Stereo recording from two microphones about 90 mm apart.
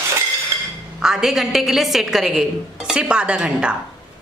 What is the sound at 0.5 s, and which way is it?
Chink, 35° right (ahead or behind).